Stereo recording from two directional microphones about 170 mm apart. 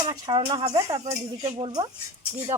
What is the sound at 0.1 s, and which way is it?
Speech, 25° right (ahead or behind).